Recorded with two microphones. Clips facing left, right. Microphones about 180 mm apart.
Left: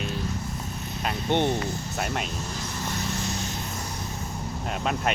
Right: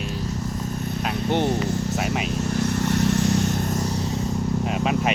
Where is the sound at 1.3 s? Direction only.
5° right (ahead or behind).